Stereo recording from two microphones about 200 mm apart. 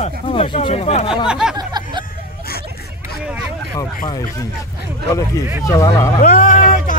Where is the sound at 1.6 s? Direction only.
20° right (ahead or behind).